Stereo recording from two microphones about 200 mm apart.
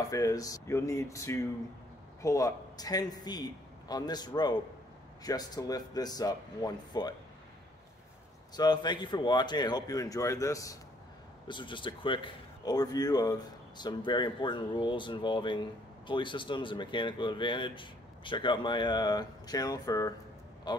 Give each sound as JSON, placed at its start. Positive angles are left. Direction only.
{"t": 0.1, "sound": "speech", "side_deg": 15}
{"t": 8.5, "sound": "speech", "side_deg": 20}